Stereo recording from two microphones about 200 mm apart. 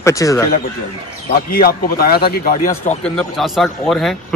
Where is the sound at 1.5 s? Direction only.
50° left (ahead or behind).